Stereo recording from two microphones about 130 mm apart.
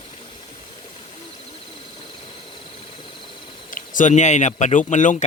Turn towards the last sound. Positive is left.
turn(degrees=70)  # may be behind; listen again after turning